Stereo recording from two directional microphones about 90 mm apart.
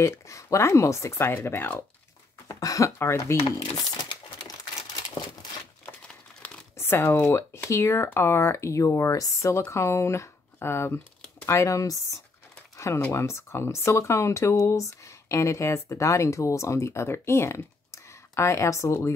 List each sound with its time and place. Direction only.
0.0 s speech: 35° left (ahead or behind)
2.4 s a sound: 40° left (ahead or behind)
3.0 s speech: 30° left (ahead or behind)
3.7 s crumpling: 50° left (ahead or behind)
5.9 s crumpling: 15° left (ahead or behind)
6.8 s speech: 25° left (ahead or behind)
12.7 s a sound: 35° left (ahead or behind)
13.1 s speech: 30° left (ahead or behind)